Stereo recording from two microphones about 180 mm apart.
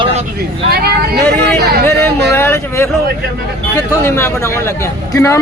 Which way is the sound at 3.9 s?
15° left (ahead or behind).